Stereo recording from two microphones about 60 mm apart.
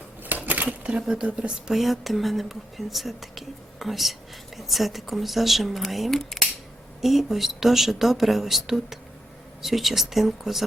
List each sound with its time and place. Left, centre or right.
0.2 s a sound: right
0.9 s speech: centre
1.8 s speech: centre